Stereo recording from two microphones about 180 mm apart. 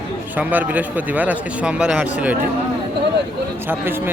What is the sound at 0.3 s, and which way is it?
Speech, 10° right (ahead or behind).